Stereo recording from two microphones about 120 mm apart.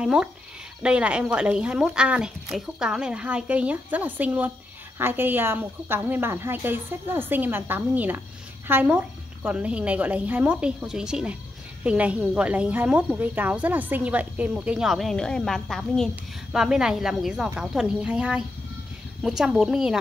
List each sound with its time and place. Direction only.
0.0 s speech: 5° right (ahead or behind)